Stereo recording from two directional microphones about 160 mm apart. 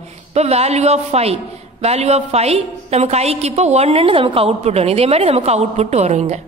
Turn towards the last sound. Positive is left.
turn(degrees=-45)  # may be behind; listen again after turning